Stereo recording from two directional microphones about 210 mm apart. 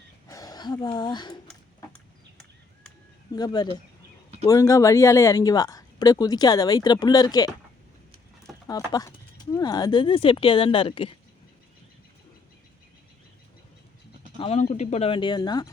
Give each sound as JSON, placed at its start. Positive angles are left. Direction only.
{"t": 0.3, "sound": "speech", "side_deg": 15}
{"t": 3.3, "sound": "speech", "side_deg": 20}
{"t": 8.6, "sound": "speech", "side_deg": 15}
{"t": 14.3, "sound": "speech", "side_deg": 25}